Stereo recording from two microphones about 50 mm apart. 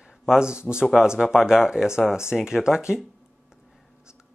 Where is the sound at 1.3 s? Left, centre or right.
Centre.